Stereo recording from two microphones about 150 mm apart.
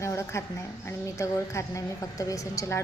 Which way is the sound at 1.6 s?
20° left (ahead or behind).